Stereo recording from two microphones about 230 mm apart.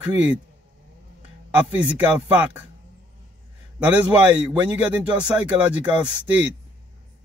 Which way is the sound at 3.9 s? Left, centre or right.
Centre.